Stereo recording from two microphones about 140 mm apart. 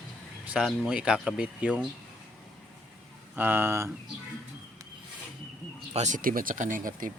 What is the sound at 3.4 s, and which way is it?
Speech, 15° right (ahead or behind).